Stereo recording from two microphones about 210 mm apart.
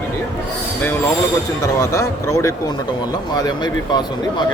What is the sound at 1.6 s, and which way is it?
Speech, 15° left (ahead or behind).